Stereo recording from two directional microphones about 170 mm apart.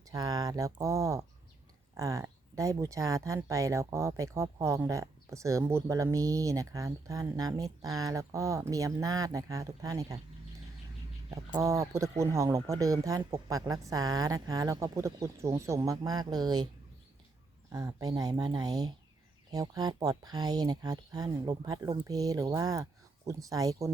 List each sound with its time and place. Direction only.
0.1 s speech: 20° right (ahead or behind)
11.3 s speech: 20° right (ahead or behind)
17.7 s speech: 20° right (ahead or behind)